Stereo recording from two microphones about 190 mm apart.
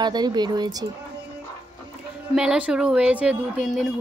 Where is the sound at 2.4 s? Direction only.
5° right (ahead or behind).